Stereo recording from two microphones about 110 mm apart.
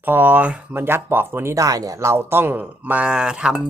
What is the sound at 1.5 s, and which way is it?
Speech, 30° right (ahead or behind).